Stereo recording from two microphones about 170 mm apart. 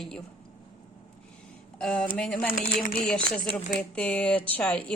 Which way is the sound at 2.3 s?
60° left (ahead or behind).